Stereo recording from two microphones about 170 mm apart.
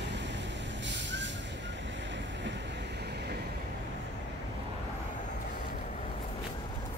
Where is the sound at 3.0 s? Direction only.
75° right (ahead or behind).